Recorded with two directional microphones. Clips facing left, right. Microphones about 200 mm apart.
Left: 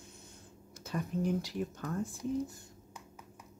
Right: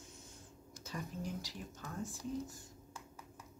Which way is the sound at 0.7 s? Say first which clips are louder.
Left 9 dB; 60° left (ahead or behind).